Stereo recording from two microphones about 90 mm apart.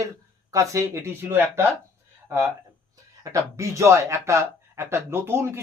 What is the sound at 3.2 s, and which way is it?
A man's voice, 35° right (ahead or behind).